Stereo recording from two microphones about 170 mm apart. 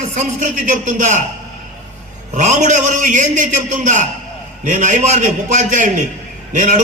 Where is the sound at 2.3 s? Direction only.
45° right (ahead or behind).